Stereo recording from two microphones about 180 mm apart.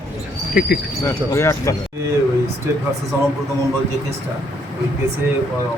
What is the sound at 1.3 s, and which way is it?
Speech, 15° left (ahead or behind).